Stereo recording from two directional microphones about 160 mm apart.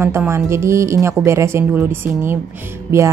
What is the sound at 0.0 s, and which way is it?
A woman's voice, 15° right (ahead or behind).